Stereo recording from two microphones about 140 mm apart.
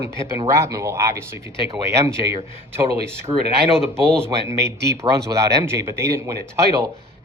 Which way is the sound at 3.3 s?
20° right (ahead or behind).